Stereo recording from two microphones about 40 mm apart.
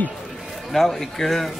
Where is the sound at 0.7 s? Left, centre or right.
Centre.